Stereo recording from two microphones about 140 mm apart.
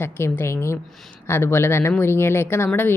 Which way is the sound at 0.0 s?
20° left (ahead or behind).